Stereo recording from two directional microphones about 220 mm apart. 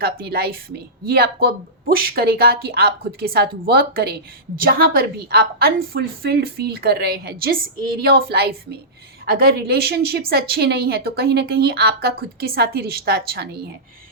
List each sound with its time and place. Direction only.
0.0 s a woman's voice: 45° right (ahead or behind)